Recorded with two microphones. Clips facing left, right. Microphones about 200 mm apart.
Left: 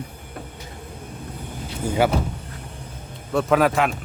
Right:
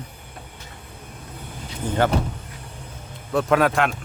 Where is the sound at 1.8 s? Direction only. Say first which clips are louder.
Left 1 dB; 10° left (ahead or behind).